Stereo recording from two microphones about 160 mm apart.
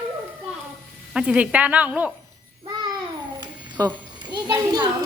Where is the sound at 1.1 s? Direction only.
5° right (ahead or behind).